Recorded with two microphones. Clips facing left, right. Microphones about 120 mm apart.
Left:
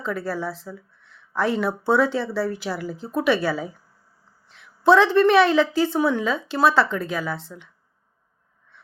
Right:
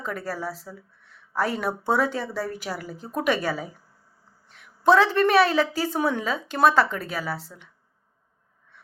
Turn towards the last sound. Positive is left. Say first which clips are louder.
# left 2 dB
turn(degrees=-40)  # may be behind; listen again after turning